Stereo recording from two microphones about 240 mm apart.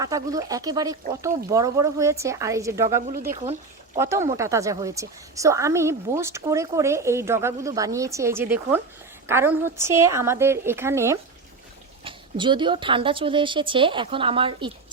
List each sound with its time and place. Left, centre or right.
0.0 s a woman's voice: centre